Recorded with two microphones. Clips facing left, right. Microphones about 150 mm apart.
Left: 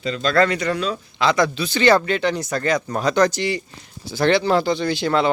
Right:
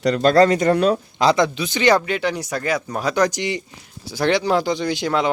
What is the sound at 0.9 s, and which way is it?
Speech, 40° right (ahead or behind).